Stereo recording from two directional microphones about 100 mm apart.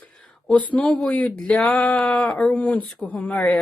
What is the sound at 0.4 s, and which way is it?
Speech, 15° left (ahead or behind).